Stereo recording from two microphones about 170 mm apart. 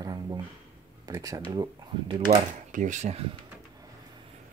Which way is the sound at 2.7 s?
45° right (ahead or behind).